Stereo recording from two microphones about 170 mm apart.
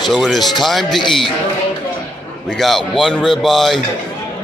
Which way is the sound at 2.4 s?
Centre (ahead or behind).